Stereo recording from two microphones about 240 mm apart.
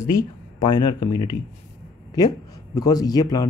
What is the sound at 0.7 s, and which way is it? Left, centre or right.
Speech, centre.